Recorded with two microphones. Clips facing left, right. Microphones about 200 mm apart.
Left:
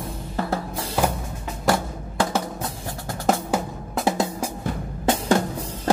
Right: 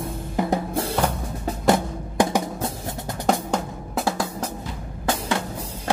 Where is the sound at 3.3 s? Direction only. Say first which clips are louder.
Left 1 dB; centre (ahead or behind).